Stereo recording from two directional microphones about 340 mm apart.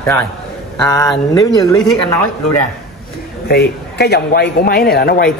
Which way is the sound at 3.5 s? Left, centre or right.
Left.